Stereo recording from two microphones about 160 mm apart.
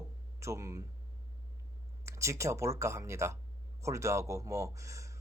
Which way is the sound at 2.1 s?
20° right (ahead or behind).